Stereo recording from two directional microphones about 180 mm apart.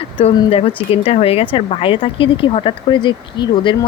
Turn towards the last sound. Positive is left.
turn(degrees=25)  # may be behind; listen again after turning